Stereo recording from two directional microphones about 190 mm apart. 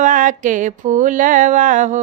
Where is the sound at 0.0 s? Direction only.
45° right (ahead or behind).